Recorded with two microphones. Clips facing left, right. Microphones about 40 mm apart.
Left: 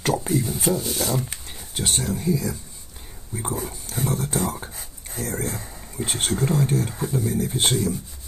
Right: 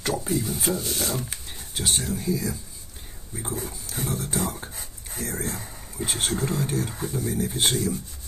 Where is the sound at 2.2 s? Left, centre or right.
Left.